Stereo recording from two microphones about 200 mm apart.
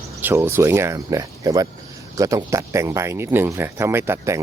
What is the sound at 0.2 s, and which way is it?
Speech, 10° right (ahead or behind).